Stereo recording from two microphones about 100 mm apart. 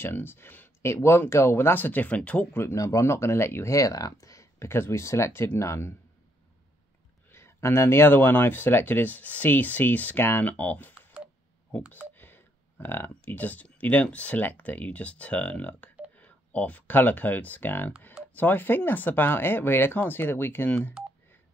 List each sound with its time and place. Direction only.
0.0 s speech: 20° left (ahead or behind)
2.6 s speech: 30° left (ahead or behind)
7.2 s speech: 25° left (ahead or behind)
12.2 s speech: 20° left (ahead or behind)